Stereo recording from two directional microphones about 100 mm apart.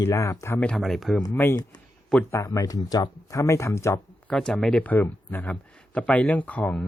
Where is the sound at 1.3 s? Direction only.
25° left (ahead or behind).